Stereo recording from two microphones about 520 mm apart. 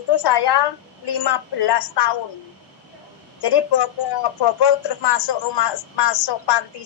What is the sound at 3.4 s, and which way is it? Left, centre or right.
Speech, left.